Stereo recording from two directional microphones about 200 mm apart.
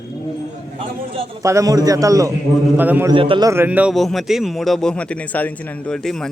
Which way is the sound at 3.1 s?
25° right (ahead or behind).